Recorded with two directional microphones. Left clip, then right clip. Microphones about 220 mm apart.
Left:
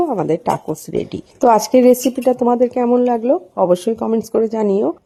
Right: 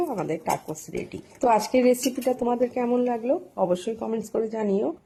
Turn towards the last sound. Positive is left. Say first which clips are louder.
# left 9 dB
turn(degrees=40)  # may be behind; listen again after turning